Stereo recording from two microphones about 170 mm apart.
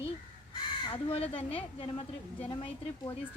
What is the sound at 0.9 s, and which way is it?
Speech, 35° left (ahead or behind).